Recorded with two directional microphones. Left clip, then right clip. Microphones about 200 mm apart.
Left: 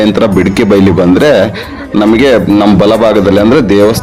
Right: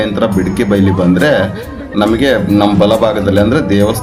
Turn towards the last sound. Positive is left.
turn(degrees=40)  # may be behind; listen again after turning